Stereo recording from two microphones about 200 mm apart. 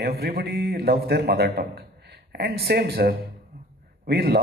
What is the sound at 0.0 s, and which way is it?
A man's voice, 50° right (ahead or behind).